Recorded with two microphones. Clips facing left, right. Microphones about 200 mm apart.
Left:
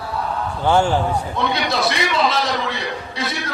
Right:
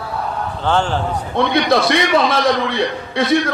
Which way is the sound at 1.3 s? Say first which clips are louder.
Right 6 dB; 60° right (ahead or behind).